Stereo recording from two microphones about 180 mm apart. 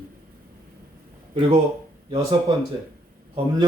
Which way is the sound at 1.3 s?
30° right (ahead or behind).